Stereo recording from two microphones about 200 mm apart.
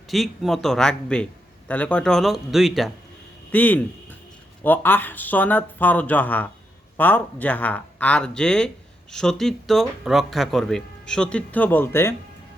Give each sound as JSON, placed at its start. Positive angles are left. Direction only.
{"t": 0.1, "sound": "speech", "side_deg": 0}